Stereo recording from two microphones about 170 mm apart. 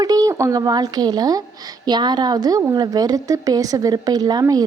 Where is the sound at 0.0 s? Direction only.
20° right (ahead or behind).